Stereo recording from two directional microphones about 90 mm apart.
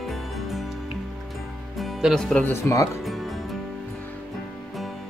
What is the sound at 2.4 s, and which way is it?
Speech, 30° left (ahead or behind).